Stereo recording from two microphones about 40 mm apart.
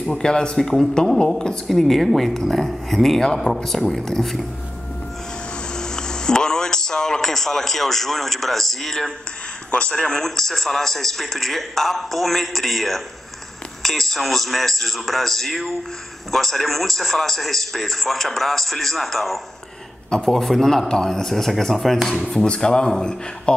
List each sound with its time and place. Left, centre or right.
0.0 s a man's voice: centre
5.8 s speech: centre
9.7 s a man's voice: left; by 22.2 s centre
22.4 s speech: left